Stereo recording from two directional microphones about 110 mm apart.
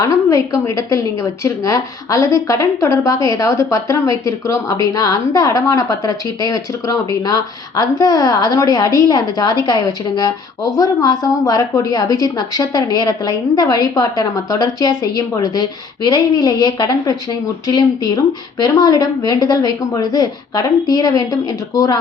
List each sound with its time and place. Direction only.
0.0 s a woman's voice: 30° left (ahead or behind)